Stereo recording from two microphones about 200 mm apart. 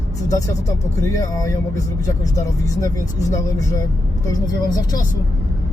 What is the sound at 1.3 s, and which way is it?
Speech, 15° left (ahead or behind).